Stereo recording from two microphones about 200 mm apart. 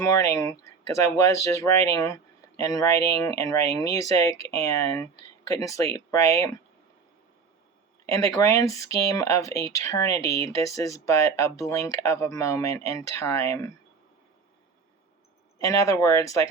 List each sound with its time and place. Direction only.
0.0 s speech: 15° left (ahead or behind)
8.1 s speech: 15° left (ahead or behind)
15.5 s speech: 15° left (ahead or behind)